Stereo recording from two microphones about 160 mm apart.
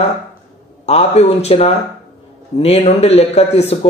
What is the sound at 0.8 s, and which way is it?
A man's voice, 40° left (ahead or behind).